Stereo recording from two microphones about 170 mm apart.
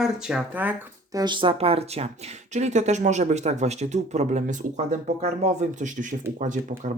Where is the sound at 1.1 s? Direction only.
25° right (ahead or behind).